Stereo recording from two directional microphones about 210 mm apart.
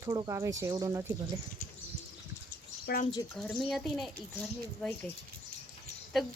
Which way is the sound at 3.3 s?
Centre (ahead or behind).